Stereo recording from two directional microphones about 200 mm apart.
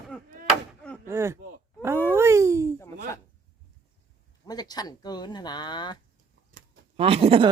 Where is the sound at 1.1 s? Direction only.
15° right (ahead or behind).